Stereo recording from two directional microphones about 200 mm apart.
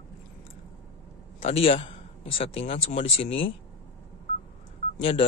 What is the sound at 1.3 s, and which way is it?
Speech, 30° left (ahead or behind).